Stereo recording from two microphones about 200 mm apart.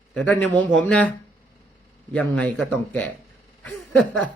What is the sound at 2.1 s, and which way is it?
Speech, 5° left (ahead or behind).